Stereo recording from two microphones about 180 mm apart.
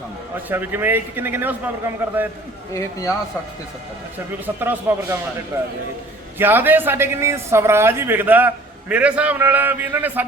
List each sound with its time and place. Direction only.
0.4 s speech: 10° right (ahead or behind)
2.7 s speech: 20° left (ahead or behind)
4.4 s speech: 10° right (ahead or behind)
6.4 s speech: 10° right (ahead or behind)